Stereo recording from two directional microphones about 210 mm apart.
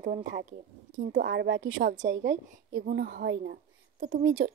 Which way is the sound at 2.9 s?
55° right (ahead or behind).